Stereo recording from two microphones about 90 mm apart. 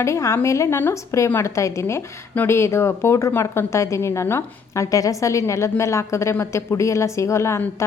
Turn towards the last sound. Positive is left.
turn(degrees=30)  # may be behind; listen again after turning